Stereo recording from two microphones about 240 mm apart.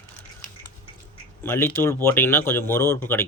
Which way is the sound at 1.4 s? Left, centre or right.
Centre.